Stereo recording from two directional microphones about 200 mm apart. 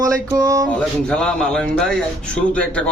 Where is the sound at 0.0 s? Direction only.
15° right (ahead or behind).